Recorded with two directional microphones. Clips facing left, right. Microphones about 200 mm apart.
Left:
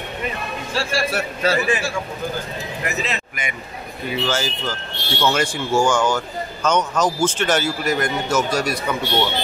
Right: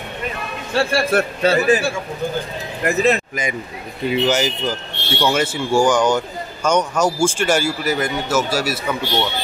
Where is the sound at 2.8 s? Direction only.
50° right (ahead or behind).